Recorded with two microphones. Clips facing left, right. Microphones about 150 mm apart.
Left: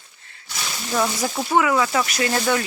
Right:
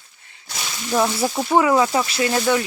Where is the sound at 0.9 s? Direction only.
20° right (ahead or behind).